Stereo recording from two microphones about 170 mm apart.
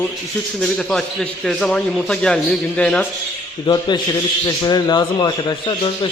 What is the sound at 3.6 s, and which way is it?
A man's voice, 25° left (ahead or behind).